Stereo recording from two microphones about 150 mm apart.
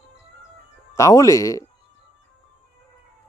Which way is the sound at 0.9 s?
20° left (ahead or behind).